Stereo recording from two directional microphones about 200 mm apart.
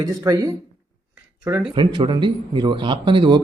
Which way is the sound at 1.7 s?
25° right (ahead or behind).